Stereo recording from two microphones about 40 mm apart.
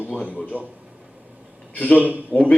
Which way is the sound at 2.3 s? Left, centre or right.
Right.